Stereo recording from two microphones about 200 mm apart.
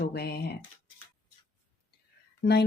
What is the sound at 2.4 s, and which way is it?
Speech, 55° left (ahead or behind).